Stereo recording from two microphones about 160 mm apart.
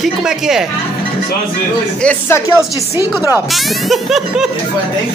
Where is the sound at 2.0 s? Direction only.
15° left (ahead or behind).